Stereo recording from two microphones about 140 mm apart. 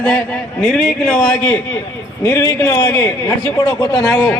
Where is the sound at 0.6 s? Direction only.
5° left (ahead or behind).